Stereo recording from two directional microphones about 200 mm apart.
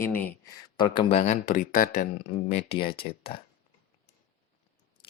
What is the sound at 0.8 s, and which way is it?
Speech, 25° left (ahead or behind).